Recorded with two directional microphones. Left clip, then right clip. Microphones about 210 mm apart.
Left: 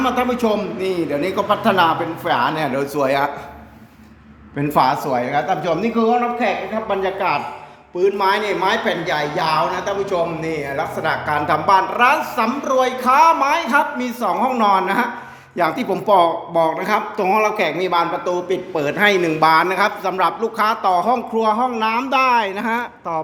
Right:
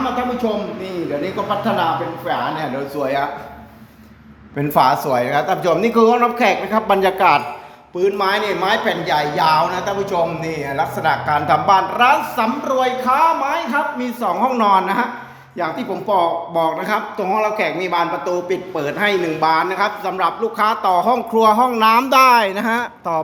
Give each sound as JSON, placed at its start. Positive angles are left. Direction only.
{"t": 0.0, "sound": "a man's voice", "side_deg": 25}
{"t": 4.5, "sound": "a man's voice", "side_deg": 0}
{"t": 15.5, "sound": "a man's voice", "side_deg": 25}
{"t": 16.6, "sound": "a man's voice", "side_deg": 10}